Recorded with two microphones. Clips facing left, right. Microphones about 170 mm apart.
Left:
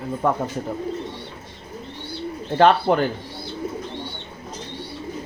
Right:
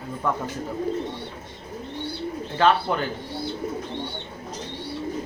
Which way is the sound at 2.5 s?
40° left (ahead or behind).